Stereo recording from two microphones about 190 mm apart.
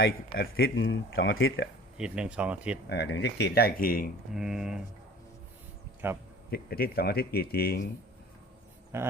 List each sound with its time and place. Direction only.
0.0 s speech: 55° left (ahead or behind); by 1.6 s 90° left
2.0 s speech: 5° right (ahead or behind)
2.9 s speech: 60° left (ahead or behind)
4.3 s speech: centre (ahead or behind)
6.0 s a man's voice: 10° right (ahead or behind)
6.5 s speech: 55° left (ahead or behind)
8.9 s a man's voice: 15° right (ahead or behind)